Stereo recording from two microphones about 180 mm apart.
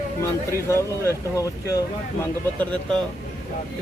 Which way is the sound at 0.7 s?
15° left (ahead or behind).